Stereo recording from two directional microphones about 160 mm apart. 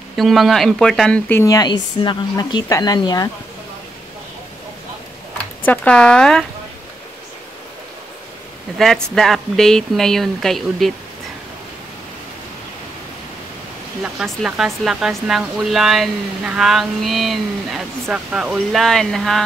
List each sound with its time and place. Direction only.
0.1 s speech: centre (ahead or behind)
1.4 s a woman's voice: 25° left (ahead or behind)
5.7 s speech: 5° left (ahead or behind)
8.7 s speech: centre (ahead or behind)
14.0 s speech: centre (ahead or behind)